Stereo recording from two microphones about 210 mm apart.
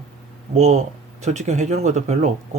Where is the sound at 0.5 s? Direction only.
35° right (ahead or behind).